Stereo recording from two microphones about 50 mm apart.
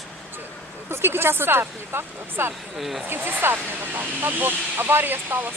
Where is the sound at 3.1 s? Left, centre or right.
Right.